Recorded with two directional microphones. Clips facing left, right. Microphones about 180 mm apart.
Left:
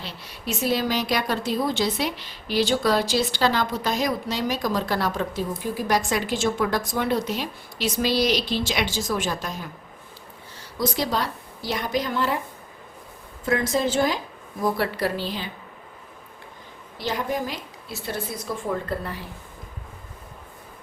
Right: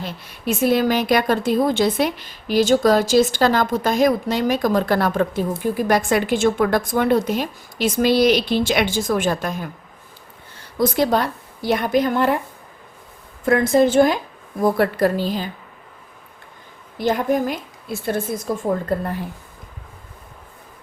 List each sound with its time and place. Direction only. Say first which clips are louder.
0.0 s a woman's voice: right 7 dB; 50° right (ahead or behind)
13.4 s a woman's voice: right 8 dB; 55° right (ahead or behind)
17.0 s a woman's voice: right 8 dB; 50° right (ahead or behind)